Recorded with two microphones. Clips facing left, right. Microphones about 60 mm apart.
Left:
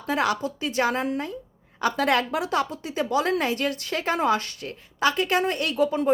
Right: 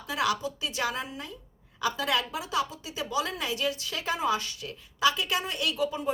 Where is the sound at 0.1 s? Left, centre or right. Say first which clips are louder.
Left 4 dB; left.